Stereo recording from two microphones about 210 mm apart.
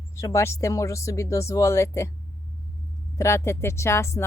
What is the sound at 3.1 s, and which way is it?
Speech, 15° left (ahead or behind).